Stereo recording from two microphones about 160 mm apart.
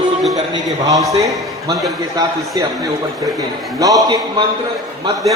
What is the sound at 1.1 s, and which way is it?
Speech, 20° right (ahead or behind).